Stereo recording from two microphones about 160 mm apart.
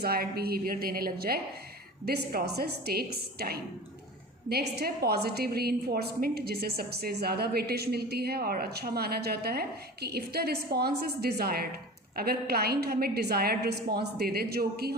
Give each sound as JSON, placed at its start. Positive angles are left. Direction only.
{"t": 0.0, "sound": "a woman's voice", "side_deg": -75}
{"t": 2.0, "sound": "a woman's voice", "side_deg": -85}